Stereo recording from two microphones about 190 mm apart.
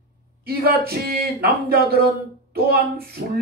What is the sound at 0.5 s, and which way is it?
Speech, 55° right (ahead or behind).